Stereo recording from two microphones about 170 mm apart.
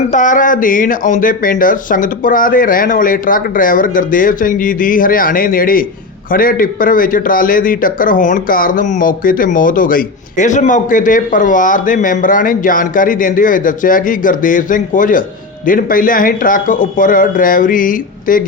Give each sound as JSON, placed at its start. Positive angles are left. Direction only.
{"t": 0.1, "sound": "a man's voice", "side_deg": 50}